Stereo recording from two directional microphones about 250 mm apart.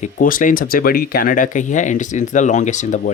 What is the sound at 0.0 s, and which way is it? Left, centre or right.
Speech, left.